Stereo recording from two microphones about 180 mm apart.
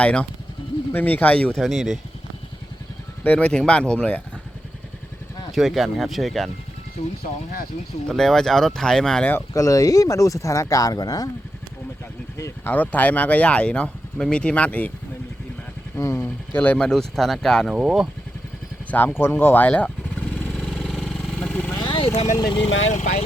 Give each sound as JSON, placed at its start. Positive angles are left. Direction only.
{"t": 0.0, "sound": "speech", "side_deg": 5}
{"t": 3.2, "sound": "speech", "side_deg": 5}
{"t": 5.5, "sound": "speech", "side_deg": 0}
{"t": 7.2, "sound": "speech", "side_deg": 55}
{"t": 8.0, "sound": "speech", "side_deg": 0}
{"t": 12.4, "sound": "speech", "side_deg": 15}
{"t": 16.0, "sound": "speech", "side_deg": 15}
{"t": 18.9, "sound": "vehicle", "side_deg": 10}
{"t": 21.8, "sound": "vehicle", "side_deg": 25}
{"t": 22.4, "sound": "speech", "side_deg": 25}